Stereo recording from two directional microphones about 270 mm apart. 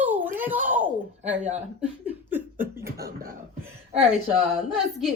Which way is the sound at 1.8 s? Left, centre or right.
Centre.